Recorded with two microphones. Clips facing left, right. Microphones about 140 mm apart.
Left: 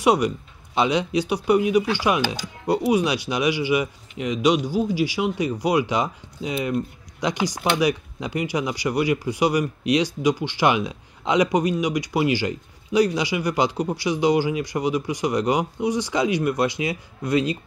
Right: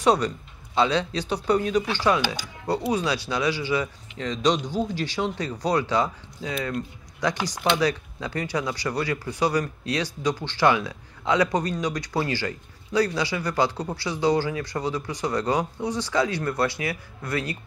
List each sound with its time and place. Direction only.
0.0 s speech: 15° left (ahead or behind)